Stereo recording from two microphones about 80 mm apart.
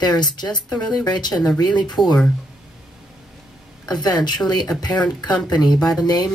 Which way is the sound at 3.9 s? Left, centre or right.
Left.